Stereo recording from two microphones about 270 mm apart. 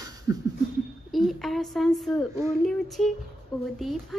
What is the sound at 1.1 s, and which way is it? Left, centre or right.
Speech, centre.